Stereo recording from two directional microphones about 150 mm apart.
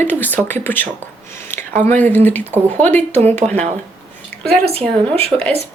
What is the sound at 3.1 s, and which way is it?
Speech, 45° right (ahead or behind).